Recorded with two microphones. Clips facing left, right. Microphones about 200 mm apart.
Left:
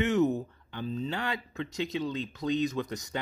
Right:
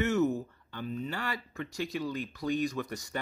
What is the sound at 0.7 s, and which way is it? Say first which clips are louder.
Speech: left 3 dB; 30° left (ahead or behind).